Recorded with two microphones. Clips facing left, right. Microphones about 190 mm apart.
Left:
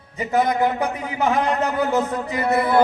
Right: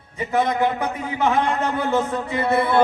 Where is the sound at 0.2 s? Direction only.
25° right (ahead or behind).